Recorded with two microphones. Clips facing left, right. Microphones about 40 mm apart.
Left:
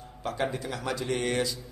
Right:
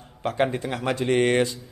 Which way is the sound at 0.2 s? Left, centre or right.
Right.